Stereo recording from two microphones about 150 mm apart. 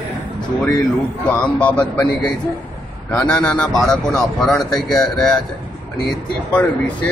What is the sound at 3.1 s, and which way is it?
Speech, 5° left (ahead or behind).